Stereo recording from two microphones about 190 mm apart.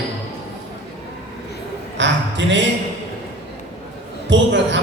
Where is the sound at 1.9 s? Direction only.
70° right (ahead or behind).